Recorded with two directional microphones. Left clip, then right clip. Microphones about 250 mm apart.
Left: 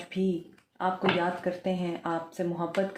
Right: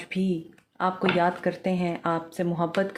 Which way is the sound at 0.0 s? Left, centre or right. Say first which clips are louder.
Right 1 dB; right.